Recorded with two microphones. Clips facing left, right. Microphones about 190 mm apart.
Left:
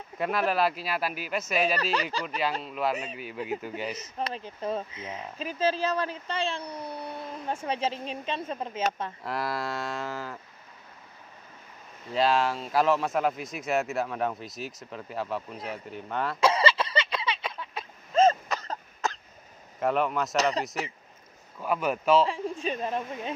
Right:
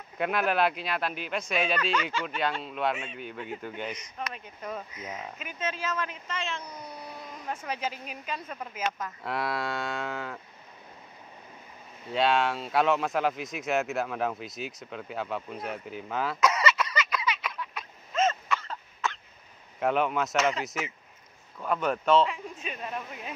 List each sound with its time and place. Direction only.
0.2 s speech: centre (ahead or behind)
1.8 s speech: 35° left (ahead or behind)
2.2 s speech: centre (ahead or behind)
4.2 s speech: 30° left (ahead or behind)
9.2 s speech: centre (ahead or behind)
12.1 s speech: centre (ahead or behind)
16.3 s a sound: 30° left (ahead or behind)
19.8 s speech: centre (ahead or behind)
20.3 s speech: 35° left (ahead or behind)
21.5 s speech: 5° left (ahead or behind)
22.2 s speech: 30° left (ahead or behind)